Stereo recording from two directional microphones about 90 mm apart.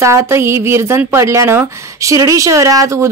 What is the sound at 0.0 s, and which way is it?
Speech, 30° right (ahead or behind).